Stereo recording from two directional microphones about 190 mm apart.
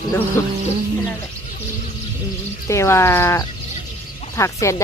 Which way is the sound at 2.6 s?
15° left (ahead or behind).